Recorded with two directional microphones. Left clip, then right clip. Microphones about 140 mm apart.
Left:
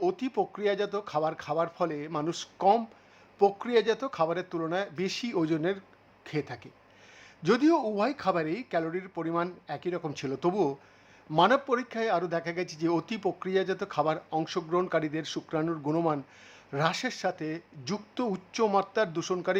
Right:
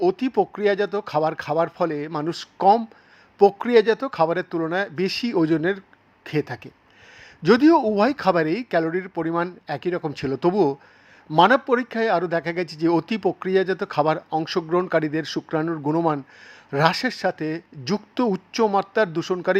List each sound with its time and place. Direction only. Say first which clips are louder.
0.0 s speech: right 8 dB; 25° right (ahead or behind)